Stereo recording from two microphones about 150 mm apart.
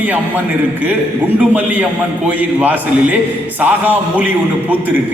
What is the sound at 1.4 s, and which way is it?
A man's voice, 10° right (ahead or behind).